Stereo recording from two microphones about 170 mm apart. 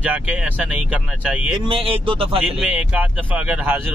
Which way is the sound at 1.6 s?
35° right (ahead or behind).